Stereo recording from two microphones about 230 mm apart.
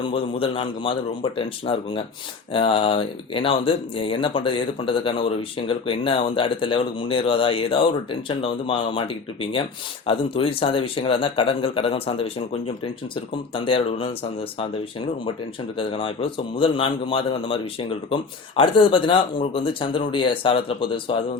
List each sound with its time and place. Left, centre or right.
0.0 s a man's voice: left
13.5 s a man's voice: left
15.8 s a man's voice: left